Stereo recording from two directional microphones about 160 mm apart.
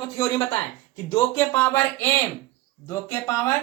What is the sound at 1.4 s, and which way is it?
Speech, 15° left (ahead or behind).